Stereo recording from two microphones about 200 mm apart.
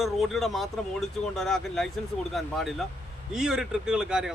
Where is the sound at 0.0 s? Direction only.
Centre (ahead or behind).